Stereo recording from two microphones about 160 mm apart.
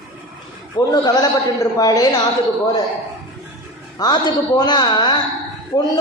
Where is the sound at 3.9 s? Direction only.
25° left (ahead or behind).